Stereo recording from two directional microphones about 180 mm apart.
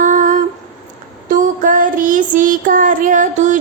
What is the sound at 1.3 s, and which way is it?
Child singing, 45° right (ahead or behind).